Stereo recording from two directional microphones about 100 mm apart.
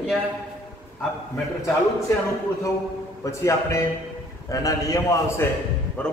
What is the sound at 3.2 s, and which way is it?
A man's voice, 30° left (ahead or behind).